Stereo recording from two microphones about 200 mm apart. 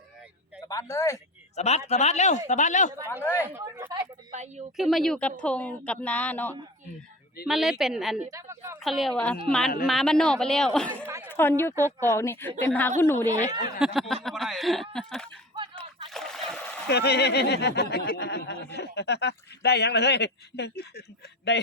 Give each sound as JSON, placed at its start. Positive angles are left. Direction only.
{"t": 0.7, "sound": "speech", "side_deg": 15}
{"t": 1.5, "sound": "speech", "side_deg": 35}
{"t": 3.4, "sound": "a sound", "side_deg": -15}
{"t": 4.3, "sound": "speech", "side_deg": -35}
{"t": 4.8, "sound": "a woman's voice", "side_deg": 0}
{"t": 7.4, "sound": "speech", "side_deg": 0}
{"t": 8.3, "sound": "speech", "side_deg": -15}
{"t": 8.8, "sound": "speech", "side_deg": 0}
{"t": 11.0, "sound": "chatter", "side_deg": -10}
{"t": 11.3, "sound": "a woman's voice", "side_deg": 10}
{"t": 13.7, "sound": "speech", "side_deg": 0}
{"t": 16.0, "sound": "splash", "side_deg": 0}
{"t": 16.9, "sound": "speech", "side_deg": 55}